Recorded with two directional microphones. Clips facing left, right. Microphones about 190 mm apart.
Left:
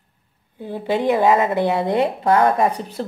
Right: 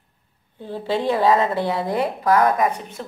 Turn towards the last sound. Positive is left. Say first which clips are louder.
# left 2 dB
turn(degrees=35)  # may be behind; listen again after turning